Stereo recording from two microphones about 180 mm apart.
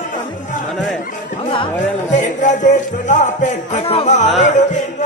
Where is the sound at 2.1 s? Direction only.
45° left (ahead or behind).